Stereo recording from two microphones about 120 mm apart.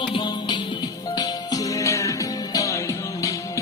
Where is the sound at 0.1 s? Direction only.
40° left (ahead or behind).